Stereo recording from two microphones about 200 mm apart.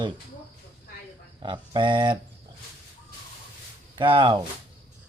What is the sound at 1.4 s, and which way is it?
Speech, 25° right (ahead or behind).